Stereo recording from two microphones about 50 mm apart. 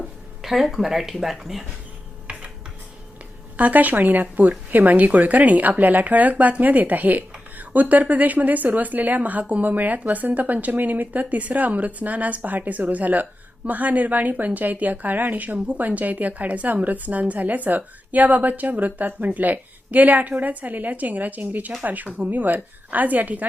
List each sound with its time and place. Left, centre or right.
0.4 s speech: centre
3.6 s speech: right
15.5 s speech: right
15.8 s speech: right